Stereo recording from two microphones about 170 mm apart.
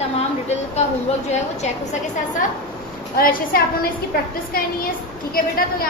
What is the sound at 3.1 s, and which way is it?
Speech, 60° left (ahead or behind).